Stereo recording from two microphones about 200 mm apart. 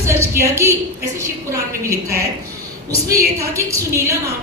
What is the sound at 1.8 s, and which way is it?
Speech, 15° right (ahead or behind).